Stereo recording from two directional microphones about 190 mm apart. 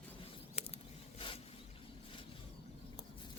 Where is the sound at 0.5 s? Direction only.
30° left (ahead or behind).